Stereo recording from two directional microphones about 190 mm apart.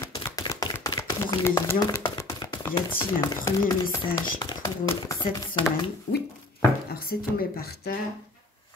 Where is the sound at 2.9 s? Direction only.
15° left (ahead or behind).